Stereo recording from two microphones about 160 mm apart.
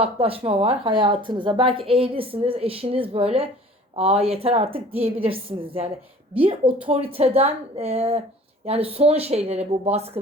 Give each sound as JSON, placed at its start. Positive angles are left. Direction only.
{"t": 0.0, "sound": "speech", "side_deg": -35}